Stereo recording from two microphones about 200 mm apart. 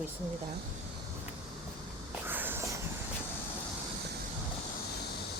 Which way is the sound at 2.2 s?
10° right (ahead or behind).